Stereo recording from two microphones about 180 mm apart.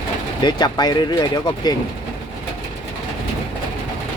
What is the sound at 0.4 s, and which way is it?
Speech, 25° left (ahead or behind).